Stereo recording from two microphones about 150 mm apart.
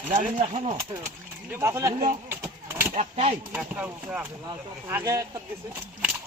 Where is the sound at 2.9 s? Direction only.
45° right (ahead or behind).